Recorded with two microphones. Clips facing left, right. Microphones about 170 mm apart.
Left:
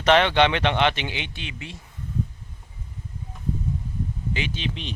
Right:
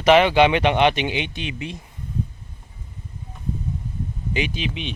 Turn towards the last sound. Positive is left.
turn(degrees=-5)  # may be behind; listen again after turning